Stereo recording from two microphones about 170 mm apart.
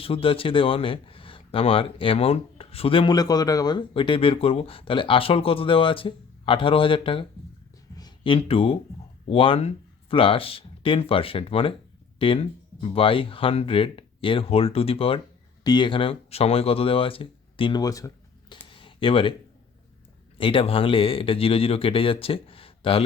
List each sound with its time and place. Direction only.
0.0 s speech: 35° left (ahead or behind)
20.4 s speech: 30° left (ahead or behind)